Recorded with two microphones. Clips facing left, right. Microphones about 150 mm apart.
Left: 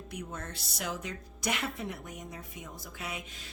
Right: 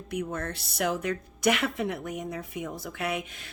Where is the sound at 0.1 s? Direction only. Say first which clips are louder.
Right 10 dB; 60° right (ahead or behind).